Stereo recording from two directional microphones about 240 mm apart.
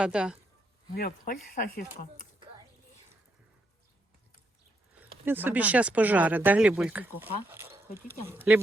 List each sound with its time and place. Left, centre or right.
0.0 s speech: centre
0.9 s speech: left
4.9 s speech: centre